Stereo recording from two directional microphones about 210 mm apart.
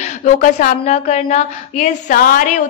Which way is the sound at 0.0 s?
35° left (ahead or behind).